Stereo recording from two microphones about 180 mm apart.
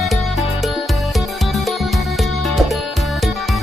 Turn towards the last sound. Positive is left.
turn(degrees=0)  # may be behind; listen again after turning